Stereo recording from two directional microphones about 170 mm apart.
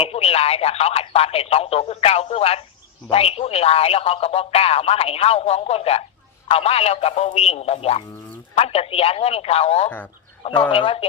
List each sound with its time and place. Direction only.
0.0 s speech: 35° left (ahead or behind)